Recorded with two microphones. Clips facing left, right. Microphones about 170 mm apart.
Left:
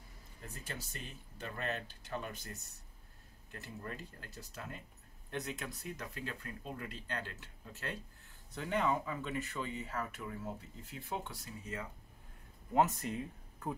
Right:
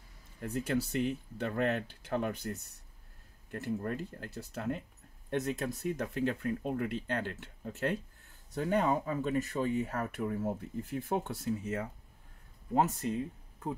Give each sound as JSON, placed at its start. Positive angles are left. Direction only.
{"t": 0.4, "sound": "speech", "side_deg": -75}
{"t": 3.5, "sound": "speech", "side_deg": -55}
{"t": 5.3, "sound": "speech", "side_deg": -45}
{"t": 8.5, "sound": "speech", "side_deg": -45}
{"t": 12.7, "sound": "speech", "side_deg": -30}